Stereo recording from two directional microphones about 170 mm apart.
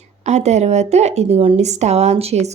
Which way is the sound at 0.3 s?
40° right (ahead or behind).